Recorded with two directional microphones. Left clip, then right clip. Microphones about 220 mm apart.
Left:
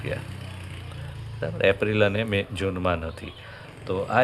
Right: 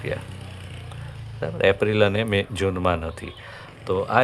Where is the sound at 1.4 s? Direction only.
15° right (ahead or behind).